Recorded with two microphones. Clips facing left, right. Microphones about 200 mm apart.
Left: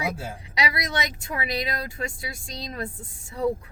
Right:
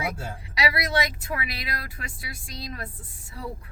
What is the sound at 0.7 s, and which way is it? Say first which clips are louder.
Speech: right 3 dB; 20° left (ahead or behind).